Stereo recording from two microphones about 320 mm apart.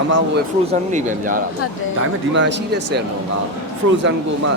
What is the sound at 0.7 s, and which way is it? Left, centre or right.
Speech, right.